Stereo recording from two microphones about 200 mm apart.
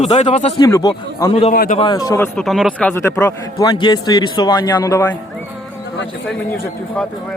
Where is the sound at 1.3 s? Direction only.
30° left (ahead or behind).